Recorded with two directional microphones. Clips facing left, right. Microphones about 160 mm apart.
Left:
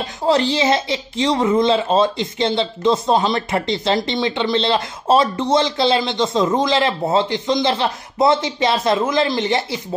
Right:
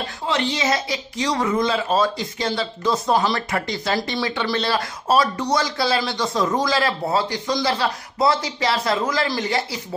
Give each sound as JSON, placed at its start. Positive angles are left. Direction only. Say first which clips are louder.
{"t": 0.3, "sound": "speech", "louder": "left 6 dB", "side_deg": 30}